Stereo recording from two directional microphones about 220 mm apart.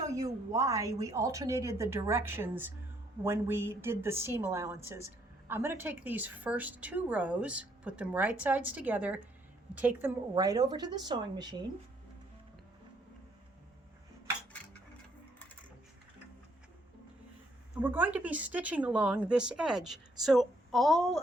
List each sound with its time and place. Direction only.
0.0 s a woman's voice: 15° right (ahead or behind)
17.7 s a woman's voice: 10° right (ahead or behind)